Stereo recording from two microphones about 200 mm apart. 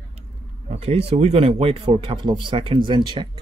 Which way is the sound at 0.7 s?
35° right (ahead or behind).